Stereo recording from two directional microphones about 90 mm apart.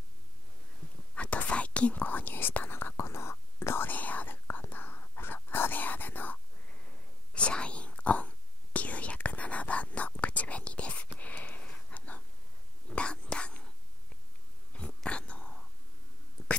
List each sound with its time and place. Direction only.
1.1 s whispering: 15° left (ahead or behind)
11.1 s sniff: 15° left (ahead or behind)
12.8 s whispering: 10° left (ahead or behind)
14.7 s whispering: 10° left (ahead or behind)